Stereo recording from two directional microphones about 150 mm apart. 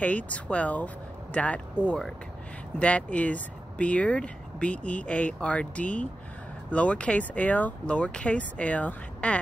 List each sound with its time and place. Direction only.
0.0 s speech: 10° left (ahead or behind)